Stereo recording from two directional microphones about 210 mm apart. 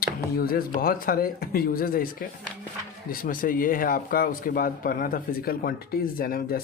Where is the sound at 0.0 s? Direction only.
45° left (ahead or behind).